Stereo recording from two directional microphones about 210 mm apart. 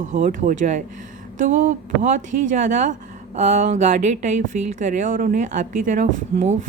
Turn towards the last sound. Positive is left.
turn(degrees=-35)  # may be behind; listen again after turning